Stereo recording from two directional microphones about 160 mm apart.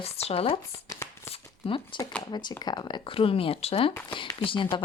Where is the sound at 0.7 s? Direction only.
20° left (ahead or behind).